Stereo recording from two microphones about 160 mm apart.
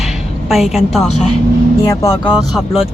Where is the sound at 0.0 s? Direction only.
Centre (ahead or behind).